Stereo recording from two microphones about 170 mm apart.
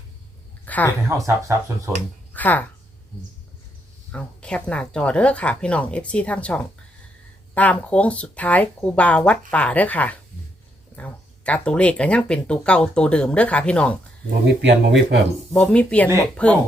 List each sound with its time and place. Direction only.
0.6 s a sound: 10° left (ahead or behind)
1.0 s speech: 20° right (ahead or behind)
2.3 s speech: 10° left (ahead or behind)
4.1 s speech: 5° left (ahead or behind)
14.4 s speech: 90° right
15.5 s speech: 5° left (ahead or behind)